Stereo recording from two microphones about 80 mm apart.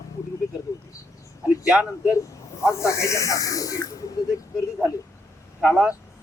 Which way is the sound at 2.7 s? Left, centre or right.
Left.